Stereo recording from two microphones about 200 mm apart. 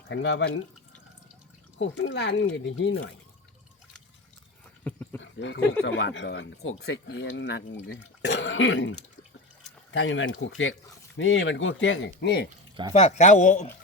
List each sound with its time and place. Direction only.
0.1 s speech: 65° left (ahead or behind)
1.8 s speech: 65° left (ahead or behind)
4.8 s a sound: 10° left (ahead or behind)
5.2 s a sound: 70° left (ahead or behind)
5.8 s speech: 65° left (ahead or behind); by 6.8 s 90° left
6.8 s speech: 60° left (ahead or behind)
12.9 s speech: 35° left (ahead or behind)